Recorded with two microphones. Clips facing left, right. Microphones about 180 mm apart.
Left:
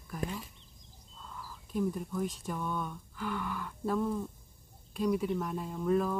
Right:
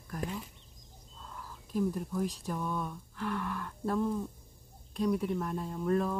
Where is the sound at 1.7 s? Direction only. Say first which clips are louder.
Right 1 dB; centre (ahead or behind).